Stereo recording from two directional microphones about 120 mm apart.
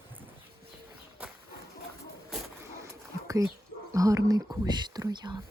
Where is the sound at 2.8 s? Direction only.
25° right (ahead or behind).